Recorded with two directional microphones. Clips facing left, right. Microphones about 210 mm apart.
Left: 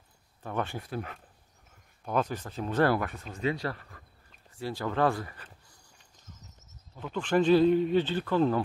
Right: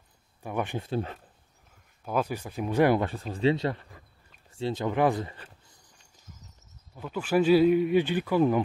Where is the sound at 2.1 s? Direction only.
10° right (ahead or behind).